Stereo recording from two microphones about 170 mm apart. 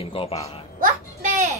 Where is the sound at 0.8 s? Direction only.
50° right (ahead or behind).